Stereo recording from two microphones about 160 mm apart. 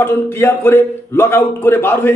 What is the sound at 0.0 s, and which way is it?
Speech, 15° left (ahead or behind).